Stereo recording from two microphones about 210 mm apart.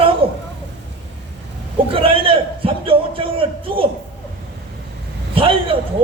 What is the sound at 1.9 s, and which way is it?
A man's voice, 25° right (ahead or behind).